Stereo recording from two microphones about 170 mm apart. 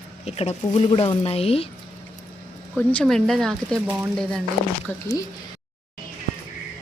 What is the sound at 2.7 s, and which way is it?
Speech, 5° left (ahead or behind).